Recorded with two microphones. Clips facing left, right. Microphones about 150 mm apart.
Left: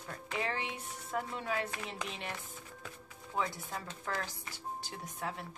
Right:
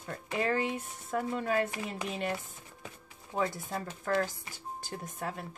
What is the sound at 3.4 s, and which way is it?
Speech, 45° right (ahead or behind).